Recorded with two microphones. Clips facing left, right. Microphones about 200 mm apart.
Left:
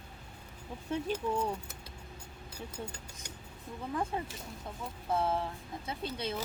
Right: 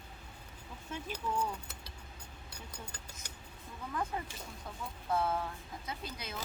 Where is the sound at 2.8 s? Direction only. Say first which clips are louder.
Left 6 dB; 25° left (ahead or behind).